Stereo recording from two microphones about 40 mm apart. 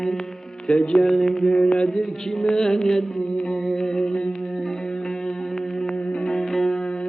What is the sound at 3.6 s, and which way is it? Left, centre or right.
Music, centre.